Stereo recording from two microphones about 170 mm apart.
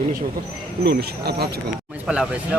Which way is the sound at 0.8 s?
70° right (ahead or behind).